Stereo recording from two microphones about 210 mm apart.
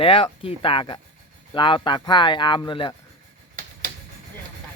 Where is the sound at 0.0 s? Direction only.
25° left (ahead or behind).